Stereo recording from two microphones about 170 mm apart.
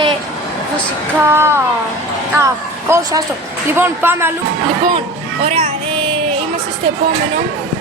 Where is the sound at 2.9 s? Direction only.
15° right (ahead or behind).